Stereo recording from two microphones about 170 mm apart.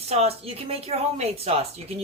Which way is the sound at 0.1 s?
35° right (ahead or behind).